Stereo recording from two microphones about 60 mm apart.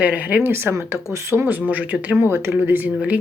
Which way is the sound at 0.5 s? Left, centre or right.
Right.